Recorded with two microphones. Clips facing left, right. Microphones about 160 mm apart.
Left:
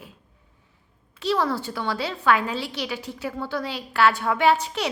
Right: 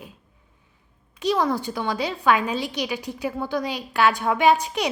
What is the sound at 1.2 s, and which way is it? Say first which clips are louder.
A woman's voice: right 2 dB; 15° right (ahead or behind).